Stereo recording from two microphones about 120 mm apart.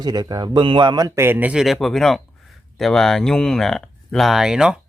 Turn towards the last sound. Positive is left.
turn(degrees=-5)  # may be behind; listen again after turning